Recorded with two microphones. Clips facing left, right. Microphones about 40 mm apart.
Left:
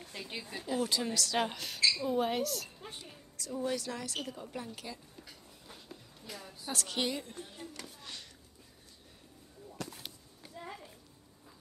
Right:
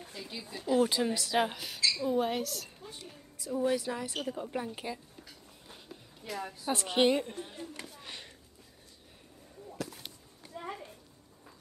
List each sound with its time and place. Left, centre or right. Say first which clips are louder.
0.3 s speech: left 2 dB; left
0.7 s a woman's voice: right 5 dB; centre
3.3 s a woman's voice: right 5 dB; centre
6.2 s a woman's voice: right 9 dB; right
6.6 s a woman's voice: right 8 dB; right
8.0 s a sound: right 2 dB; right
9.8 s a sound: right 3 dB; centre